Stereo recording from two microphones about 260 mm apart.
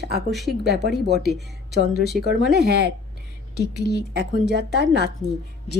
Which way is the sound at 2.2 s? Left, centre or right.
Right.